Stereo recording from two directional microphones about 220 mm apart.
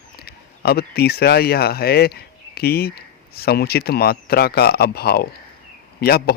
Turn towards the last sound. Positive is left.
turn(degrees=45)  # may be behind; listen again after turning